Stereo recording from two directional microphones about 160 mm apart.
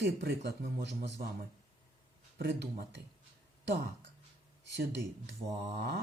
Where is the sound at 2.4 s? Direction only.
90° right.